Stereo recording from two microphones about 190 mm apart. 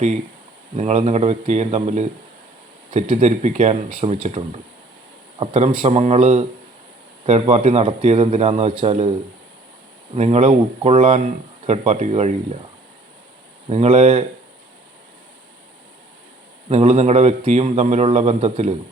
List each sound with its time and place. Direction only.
0.8 s a man's voice: 35° right (ahead or behind)
5.4 s a man's voice: 30° right (ahead or behind)
10.2 s a man's voice: 35° right (ahead or behind)
13.7 s a man's voice: 35° right (ahead or behind)
16.6 s a man's voice: 35° right (ahead or behind)